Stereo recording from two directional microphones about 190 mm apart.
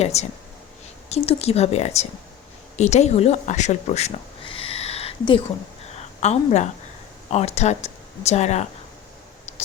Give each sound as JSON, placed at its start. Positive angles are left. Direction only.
{"t": 0.0, "sound": "a woman's voice", "side_deg": 35}